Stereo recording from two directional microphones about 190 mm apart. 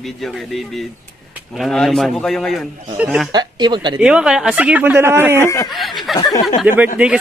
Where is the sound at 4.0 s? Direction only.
5° right (ahead or behind).